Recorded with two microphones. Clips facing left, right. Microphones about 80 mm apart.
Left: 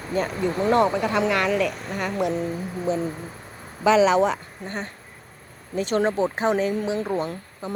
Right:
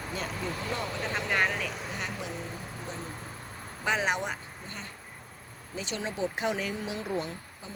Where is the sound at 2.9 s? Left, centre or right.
Left.